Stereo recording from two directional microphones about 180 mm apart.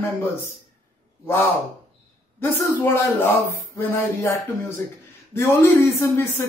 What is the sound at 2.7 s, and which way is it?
A man's voice, 10° left (ahead or behind).